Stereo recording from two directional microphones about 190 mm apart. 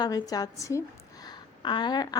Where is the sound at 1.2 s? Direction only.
25° left (ahead or behind).